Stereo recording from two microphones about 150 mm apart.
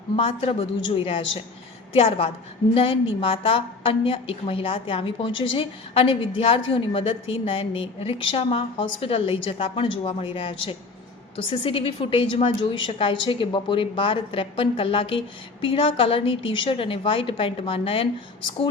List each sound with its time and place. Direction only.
0.2 s a woman's voice: 40° left (ahead or behind)